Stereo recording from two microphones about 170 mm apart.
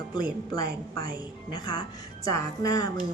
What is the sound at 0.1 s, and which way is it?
A woman's voice, 25° left (ahead or behind).